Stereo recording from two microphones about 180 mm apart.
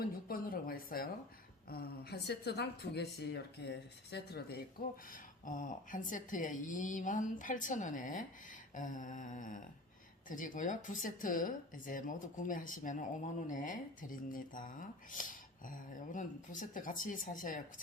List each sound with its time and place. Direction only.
0.0 s a sound: 55° left (ahead or behind)
1.7 s a woman's voice: 60° left (ahead or behind)
5.1 s speech: 45° left (ahead or behind)